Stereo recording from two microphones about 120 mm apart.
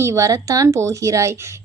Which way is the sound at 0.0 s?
25° right (ahead or behind).